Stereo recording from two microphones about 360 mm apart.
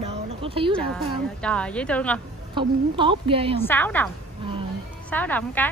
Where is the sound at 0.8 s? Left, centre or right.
Centre.